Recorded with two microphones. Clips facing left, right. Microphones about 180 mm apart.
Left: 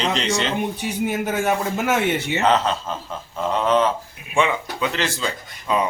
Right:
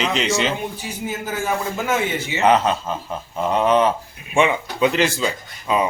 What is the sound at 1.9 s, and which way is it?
Speech, 65° left (ahead or behind).